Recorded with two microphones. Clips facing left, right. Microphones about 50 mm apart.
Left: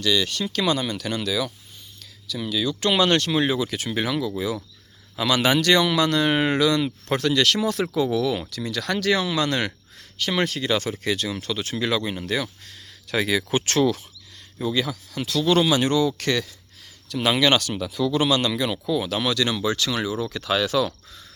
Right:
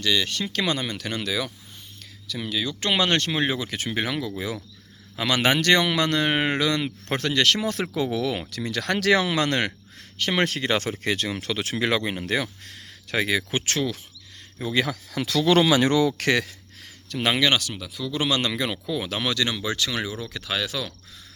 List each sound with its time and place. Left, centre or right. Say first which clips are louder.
0.0 s speech: left 2 dB; right
9.0 s speech: right 2 dB; right
9.5 s speech: even; right
10.4 s speech: left 1 dB; right
11.3 s speech: even; right
13.1 s speech: left 2 dB; right
13.7 s speech: left 9 dB; centre
15.6 s speech: right 1 dB; right
17.2 s speech: left 2 dB; right
17.4 s speech: left 3 dB; centre
18.2 s speech: even; right; by 20.9 s centre